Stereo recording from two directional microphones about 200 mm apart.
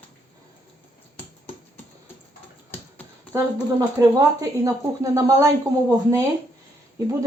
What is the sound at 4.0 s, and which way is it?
A woman's voice, 15° right (ahead or behind).